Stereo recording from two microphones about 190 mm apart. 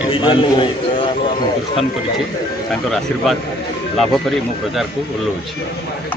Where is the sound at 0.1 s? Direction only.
25° left (ahead or behind).